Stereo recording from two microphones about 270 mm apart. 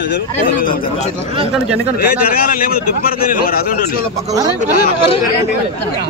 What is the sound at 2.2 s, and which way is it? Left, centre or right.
A man's voice, left.